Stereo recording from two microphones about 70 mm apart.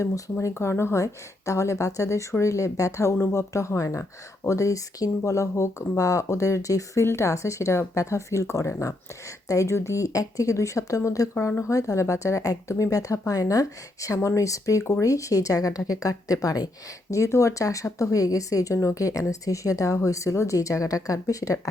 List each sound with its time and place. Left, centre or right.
0.4 s speech: left
7.0 s speech: left
17.1 s speech: left